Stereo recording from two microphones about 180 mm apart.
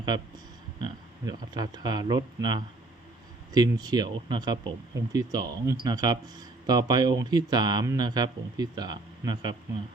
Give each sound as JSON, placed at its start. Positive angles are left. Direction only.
{"t": 0.9, "sound": "speech", "side_deg": -25}